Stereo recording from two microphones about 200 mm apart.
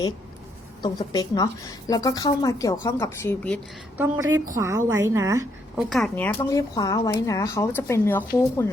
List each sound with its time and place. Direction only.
0.8 s a woman's voice: 20° left (ahead or behind)
3.9 s a woman's voice: 10° right (ahead or behind)
5.7 s speech: centre (ahead or behind)